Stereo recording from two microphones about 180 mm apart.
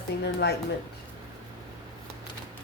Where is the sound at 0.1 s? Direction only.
65° left (ahead or behind).